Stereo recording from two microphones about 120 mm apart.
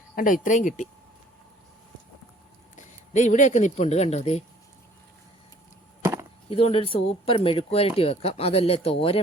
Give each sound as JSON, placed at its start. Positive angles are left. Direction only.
{"t": 0.3, "sound": "speech", "side_deg": 90}
{"t": 2.7, "sound": "speech", "side_deg": 85}
{"t": 6.0, "sound": "chop", "side_deg": -25}
{"t": 6.5, "sound": "speech", "side_deg": 55}